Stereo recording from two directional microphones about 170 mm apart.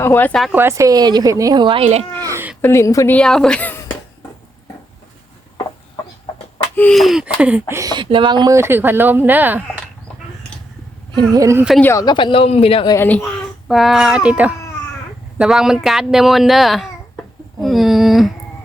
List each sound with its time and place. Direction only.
0.0 s a woman's voice: 15° left (ahead or behind)
0.5 s a woman's voice: 15° right (ahead or behind); by 2.0 s 35° right (ahead or behind)
2.1 s a sound: 15° right (ahead or behind)
2.6 s a woman's voice: 15° left (ahead or behind)
3.2 s speech: 5° left (ahead or behind)
6.7 s speech: 5° left (ahead or behind)
7.7 s speech: 20° right (ahead or behind)
11.1 s a woman's voice: 20° right (ahead or behind)
11.8 s speech: 15° left (ahead or behind); by 12.9 s 35° left (ahead or behind)
12.9 s a woman's voice: 10° left (ahead or behind)
13.7 s speech: centre (ahead or behind)